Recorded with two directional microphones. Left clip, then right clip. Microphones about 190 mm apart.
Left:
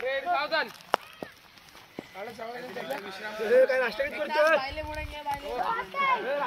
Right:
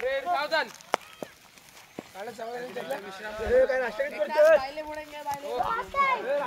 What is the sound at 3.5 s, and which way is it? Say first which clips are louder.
Speech: left 1 dB; 50° left (ahead or behind).